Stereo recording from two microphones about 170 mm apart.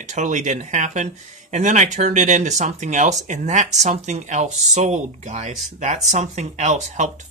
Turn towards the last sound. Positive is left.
turn(degrees=-45)  # may be behind; listen again after turning